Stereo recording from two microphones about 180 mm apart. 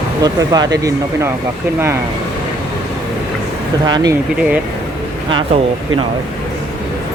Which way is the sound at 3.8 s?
20° right (ahead or behind).